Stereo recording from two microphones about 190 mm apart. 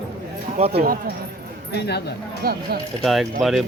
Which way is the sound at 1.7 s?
60° left (ahead or behind).